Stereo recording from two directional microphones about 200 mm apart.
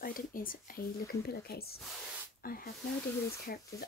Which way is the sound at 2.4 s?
45° left (ahead or behind).